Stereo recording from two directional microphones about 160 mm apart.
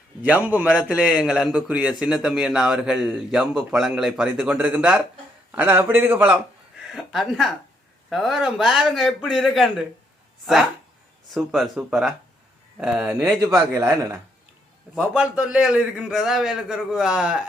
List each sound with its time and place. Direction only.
0.2 s a man's voice: 10° right (ahead or behind)
13.4 s a man's voice: 20° right (ahead or behind)